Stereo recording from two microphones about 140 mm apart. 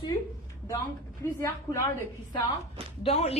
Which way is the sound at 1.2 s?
20° left (ahead or behind).